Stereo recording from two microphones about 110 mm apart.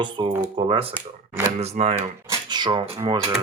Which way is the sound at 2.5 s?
40° right (ahead or behind).